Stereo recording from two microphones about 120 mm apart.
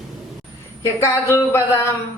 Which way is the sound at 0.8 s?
20° left (ahead or behind).